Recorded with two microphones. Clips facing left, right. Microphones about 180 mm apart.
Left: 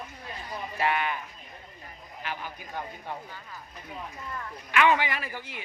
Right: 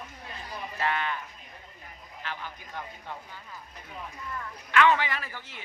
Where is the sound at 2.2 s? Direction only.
15° left (ahead or behind).